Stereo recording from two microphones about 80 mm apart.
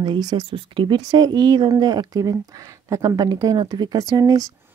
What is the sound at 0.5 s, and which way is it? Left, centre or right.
Speech, right.